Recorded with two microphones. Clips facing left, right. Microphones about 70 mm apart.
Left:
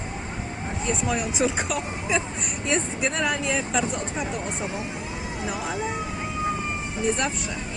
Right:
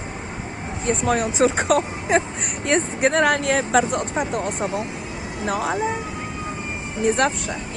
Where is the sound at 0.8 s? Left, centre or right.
Right.